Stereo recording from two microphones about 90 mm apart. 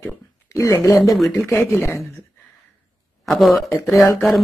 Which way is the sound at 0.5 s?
35° left (ahead or behind).